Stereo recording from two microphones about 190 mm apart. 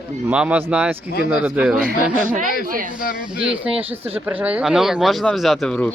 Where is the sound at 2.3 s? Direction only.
45° right (ahead or behind).